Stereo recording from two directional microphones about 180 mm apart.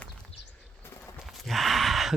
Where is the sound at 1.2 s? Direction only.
Centre (ahead or behind).